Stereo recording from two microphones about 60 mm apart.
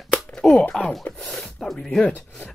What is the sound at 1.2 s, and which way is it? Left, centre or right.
Speech, centre.